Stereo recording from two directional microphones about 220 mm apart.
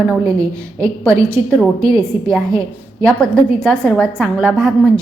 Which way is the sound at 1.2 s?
15° right (ahead or behind).